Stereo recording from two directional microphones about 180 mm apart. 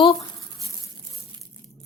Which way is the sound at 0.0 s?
25° left (ahead or behind).